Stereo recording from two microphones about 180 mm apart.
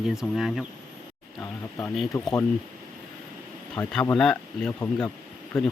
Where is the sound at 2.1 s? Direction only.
15° left (ahead or behind).